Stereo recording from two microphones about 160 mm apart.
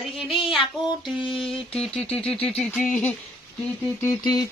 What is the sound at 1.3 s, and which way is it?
Speech, 5° left (ahead or behind).